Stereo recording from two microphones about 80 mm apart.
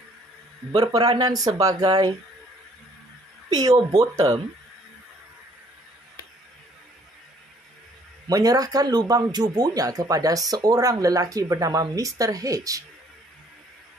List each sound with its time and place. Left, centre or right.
0.7 s speech: right
3.4 s speech: right
8.3 s speech: right